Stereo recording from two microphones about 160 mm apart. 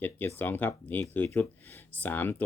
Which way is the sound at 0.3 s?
10° left (ahead or behind).